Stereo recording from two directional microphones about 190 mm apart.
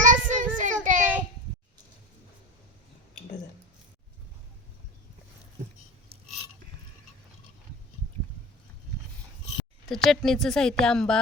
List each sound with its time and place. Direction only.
0.0 s child singing: 45° right (ahead or behind)
9.9 s a woman's voice: centre (ahead or behind)